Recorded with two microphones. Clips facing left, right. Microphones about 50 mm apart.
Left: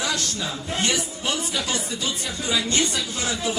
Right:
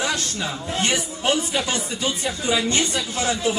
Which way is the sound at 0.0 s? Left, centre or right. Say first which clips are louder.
Right 2 dB; right.